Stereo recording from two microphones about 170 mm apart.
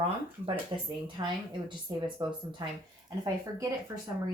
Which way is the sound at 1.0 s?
30° right (ahead or behind).